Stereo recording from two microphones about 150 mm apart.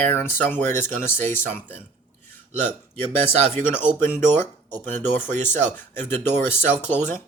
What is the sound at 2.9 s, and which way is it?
Speech, 15° left (ahead or behind).